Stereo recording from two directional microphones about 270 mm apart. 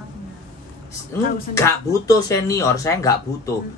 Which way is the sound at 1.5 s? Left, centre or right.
Centre.